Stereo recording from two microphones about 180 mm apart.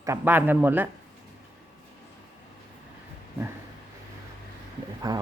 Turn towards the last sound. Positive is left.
turn(degrees=-20)  # may be behind; listen again after turning